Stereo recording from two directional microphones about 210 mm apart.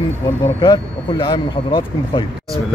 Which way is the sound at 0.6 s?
20° left (ahead or behind).